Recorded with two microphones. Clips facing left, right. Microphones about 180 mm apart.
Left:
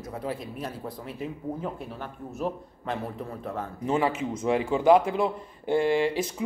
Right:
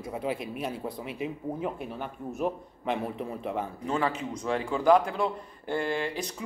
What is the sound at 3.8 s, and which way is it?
Speech, 25° left (ahead or behind).